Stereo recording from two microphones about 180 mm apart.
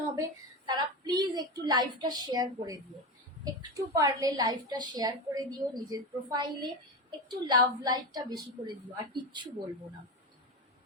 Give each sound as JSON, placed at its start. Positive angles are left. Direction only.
{"t": 0.2, "sound": "a woman's voice", "side_deg": -25}